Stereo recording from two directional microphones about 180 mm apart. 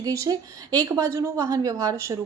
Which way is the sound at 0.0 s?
20° right (ahead or behind).